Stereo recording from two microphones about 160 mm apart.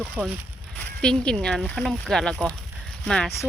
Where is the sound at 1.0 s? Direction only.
5° left (ahead or behind).